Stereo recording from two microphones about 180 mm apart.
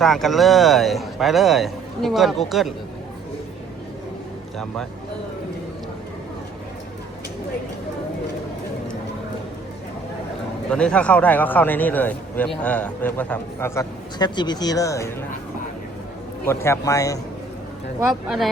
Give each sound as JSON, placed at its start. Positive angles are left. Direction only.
{"t": 0.0, "sound": "speech", "side_deg": 0}
{"t": 10.7, "sound": "a man's voice", "side_deg": 5}
{"t": 16.5, "sound": "a man's voice", "side_deg": 15}
{"t": 18.0, "sound": "speech", "side_deg": 0}